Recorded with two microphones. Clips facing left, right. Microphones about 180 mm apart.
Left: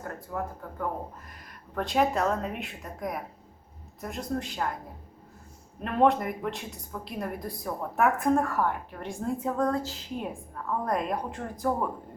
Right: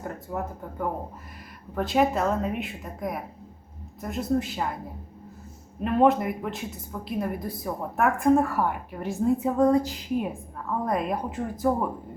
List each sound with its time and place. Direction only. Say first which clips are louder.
0.3 s speech: right 1 dB; 20° right (ahead or behind)
1.7 s speech: right 3 dB; 5° right (ahead or behind)
5.8 s speech: right 3 dB; 5° right (ahead or behind)
10.7 s speech: right 2 dB; 5° right (ahead or behind)